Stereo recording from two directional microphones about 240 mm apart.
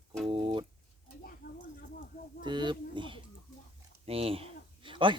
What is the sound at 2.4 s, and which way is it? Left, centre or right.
Speech, centre.